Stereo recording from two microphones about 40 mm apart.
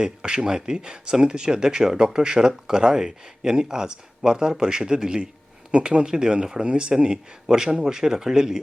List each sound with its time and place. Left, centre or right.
0.0 s speech: centre